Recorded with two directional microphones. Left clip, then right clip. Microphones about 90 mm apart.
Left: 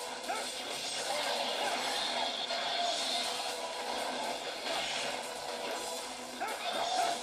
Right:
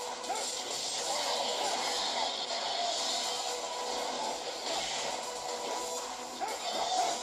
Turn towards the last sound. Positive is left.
turn(degrees=-15)  # may be behind; listen again after turning